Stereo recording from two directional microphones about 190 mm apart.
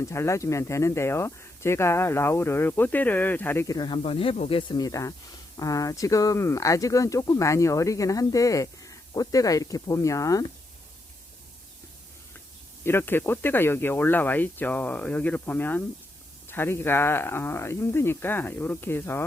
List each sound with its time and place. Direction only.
0.0 s speech: 15° left (ahead or behind)
12.8 s speech: 10° left (ahead or behind)